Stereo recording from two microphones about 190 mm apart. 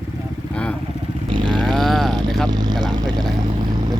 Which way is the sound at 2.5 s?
20° right (ahead or behind).